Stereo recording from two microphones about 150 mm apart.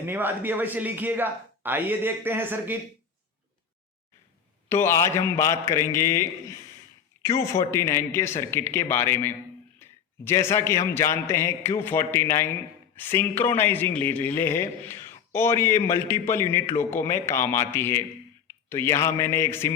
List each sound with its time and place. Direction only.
0.0 s a man's voice: 15° right (ahead or behind)
4.7 s a man's voice: 15° left (ahead or behind)